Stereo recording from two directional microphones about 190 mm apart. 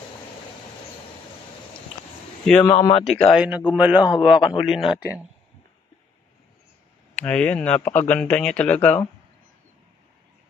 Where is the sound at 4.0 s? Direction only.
25° left (ahead or behind).